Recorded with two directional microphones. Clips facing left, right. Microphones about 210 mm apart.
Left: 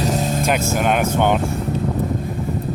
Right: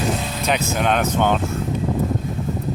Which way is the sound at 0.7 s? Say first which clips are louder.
Left 1 dB; 10° left (ahead or behind).